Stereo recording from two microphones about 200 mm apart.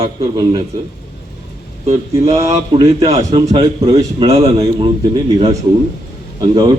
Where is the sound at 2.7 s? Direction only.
25° right (ahead or behind).